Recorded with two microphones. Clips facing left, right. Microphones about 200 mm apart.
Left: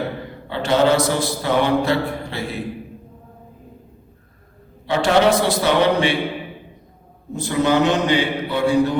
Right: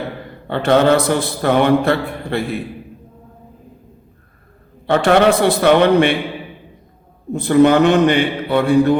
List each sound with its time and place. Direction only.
0.4 s a man's voice: 55° right (ahead or behind)
4.9 s a man's voice: 60° right (ahead or behind)
7.3 s a man's voice: 55° right (ahead or behind)